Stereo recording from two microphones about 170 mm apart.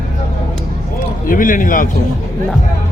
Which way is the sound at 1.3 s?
50° left (ahead or behind).